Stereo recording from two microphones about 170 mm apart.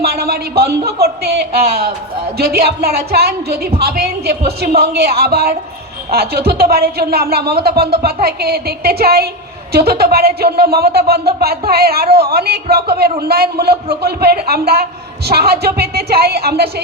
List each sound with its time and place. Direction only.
0.0 s a man's voice: 65° right (ahead or behind)